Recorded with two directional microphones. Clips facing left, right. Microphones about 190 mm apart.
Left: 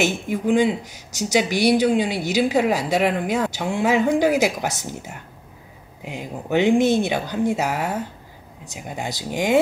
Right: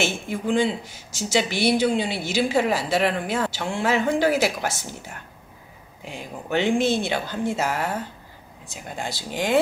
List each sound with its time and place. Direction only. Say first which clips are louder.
0.0 s speech: left 4 dB; 15° left (ahead or behind)